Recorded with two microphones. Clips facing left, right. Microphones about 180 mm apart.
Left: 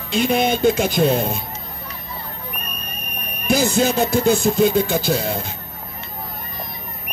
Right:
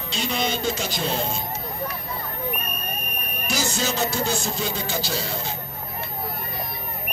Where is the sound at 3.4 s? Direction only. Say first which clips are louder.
Left 9 dB; 55° left (ahead or behind).